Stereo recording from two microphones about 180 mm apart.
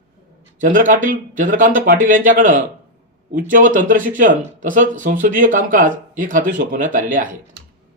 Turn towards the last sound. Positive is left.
turn(degrees=-50)  # may be behind; listen again after turning